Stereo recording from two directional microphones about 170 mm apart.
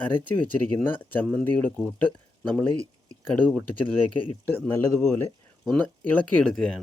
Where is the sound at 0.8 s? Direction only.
10° left (ahead or behind).